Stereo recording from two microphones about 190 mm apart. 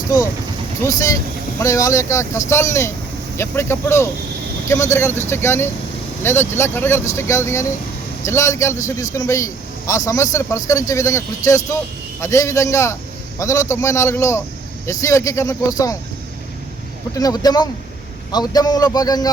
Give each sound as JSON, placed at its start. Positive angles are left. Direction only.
{"t": 0.8, "sound": "speech", "side_deg": 15}
{"t": 17.2, "sound": "a man's voice", "side_deg": 20}